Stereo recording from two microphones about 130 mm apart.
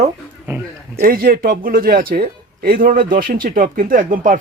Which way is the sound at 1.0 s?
90° right.